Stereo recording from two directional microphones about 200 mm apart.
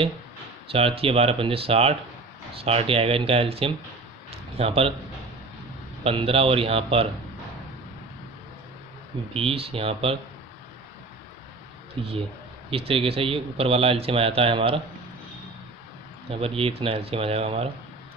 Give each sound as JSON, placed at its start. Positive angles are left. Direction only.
{"t": 0.7, "sound": "speech", "side_deg": -30}
{"t": 4.3, "sound": "a sound", "side_deg": -30}
{"t": 6.0, "sound": "speech", "side_deg": -30}
{"t": 9.3, "sound": "speech", "side_deg": -30}
{"t": 12.7, "sound": "speech", "side_deg": -30}
{"t": 16.3, "sound": "speech", "side_deg": -30}